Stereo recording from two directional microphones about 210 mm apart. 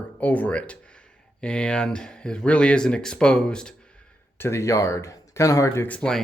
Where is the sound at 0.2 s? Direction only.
5° left (ahead or behind).